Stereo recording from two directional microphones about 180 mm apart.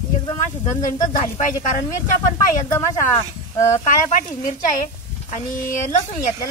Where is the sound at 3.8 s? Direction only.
45° left (ahead or behind).